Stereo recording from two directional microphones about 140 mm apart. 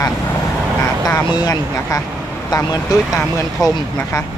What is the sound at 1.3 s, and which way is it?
Speech, 25° left (ahead or behind).